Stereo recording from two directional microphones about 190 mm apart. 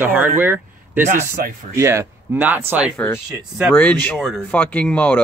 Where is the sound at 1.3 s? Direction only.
50° right (ahead or behind).